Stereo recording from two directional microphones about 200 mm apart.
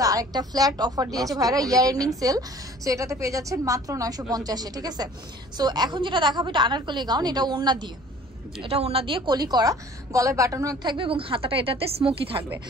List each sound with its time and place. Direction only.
0.0 s a woman's voice: 20° right (ahead or behind)